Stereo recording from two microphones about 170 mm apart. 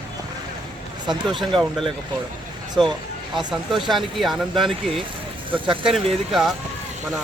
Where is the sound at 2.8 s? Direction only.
30° right (ahead or behind).